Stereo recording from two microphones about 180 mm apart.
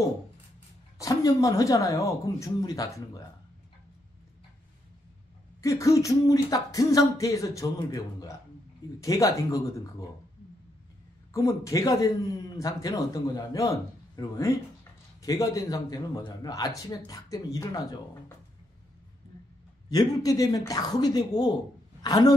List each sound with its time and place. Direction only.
0.9 s a man's voice: 20° left (ahead or behind)
5.6 s speech: 15° left (ahead or behind)
11.3 s a man's voice: 15° left (ahead or behind)
19.9 s a man's voice: 20° left (ahead or behind)